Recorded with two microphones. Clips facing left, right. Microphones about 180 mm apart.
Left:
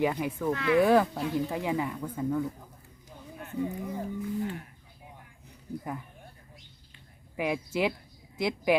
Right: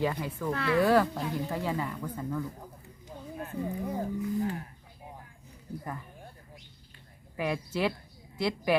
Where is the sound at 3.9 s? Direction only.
40° right (ahead or behind).